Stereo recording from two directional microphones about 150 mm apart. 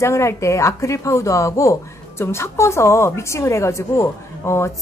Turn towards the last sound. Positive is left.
turn(degrees=20)  # may be behind; listen again after turning